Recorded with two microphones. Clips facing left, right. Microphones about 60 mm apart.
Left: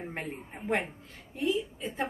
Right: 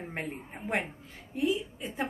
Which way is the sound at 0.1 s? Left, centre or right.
Centre.